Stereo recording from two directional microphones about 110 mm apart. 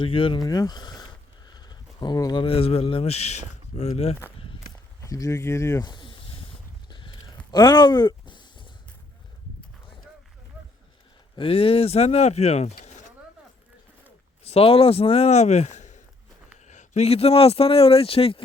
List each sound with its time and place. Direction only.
0.0 s speech: 50° left (ahead or behind)
0.3 s speech: 35° left (ahead or behind)
1.5 s a sound: 40° left (ahead or behind)
2.4 s speech: 60° left (ahead or behind)
4.9 s speech: 30° left (ahead or behind)
5.8 s snake: 45° left (ahead or behind)
7.5 s a sound: 45° left (ahead or behind)
11.3 s speech: 60° left (ahead or behind); by 13.1 s 90° left
14.4 s speech: 60° left (ahead or behind)